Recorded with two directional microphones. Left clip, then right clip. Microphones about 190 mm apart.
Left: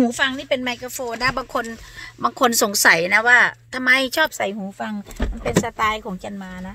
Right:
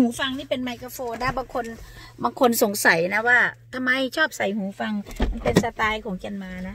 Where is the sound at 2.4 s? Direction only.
Centre (ahead or behind).